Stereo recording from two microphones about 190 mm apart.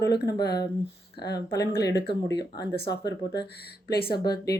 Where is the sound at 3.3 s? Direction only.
60° left (ahead or behind).